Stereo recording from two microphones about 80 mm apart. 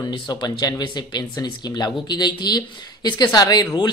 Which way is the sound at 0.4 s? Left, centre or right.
Left.